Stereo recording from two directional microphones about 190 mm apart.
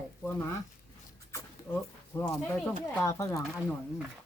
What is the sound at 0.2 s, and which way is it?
Speech, 10° left (ahead or behind).